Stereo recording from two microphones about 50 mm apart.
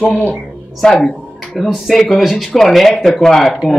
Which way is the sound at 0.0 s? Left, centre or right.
Left.